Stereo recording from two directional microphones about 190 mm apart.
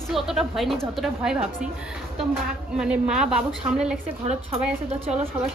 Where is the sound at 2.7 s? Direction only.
5° right (ahead or behind).